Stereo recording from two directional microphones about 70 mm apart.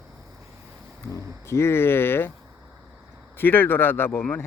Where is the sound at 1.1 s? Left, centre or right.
Left.